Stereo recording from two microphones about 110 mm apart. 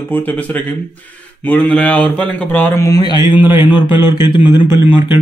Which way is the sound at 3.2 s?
20° right (ahead or behind).